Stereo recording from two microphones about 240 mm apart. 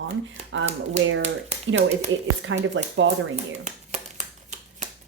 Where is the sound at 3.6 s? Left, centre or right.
Right.